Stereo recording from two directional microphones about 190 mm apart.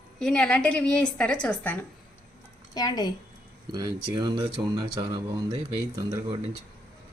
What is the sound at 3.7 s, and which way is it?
Speech, 20° right (ahead or behind).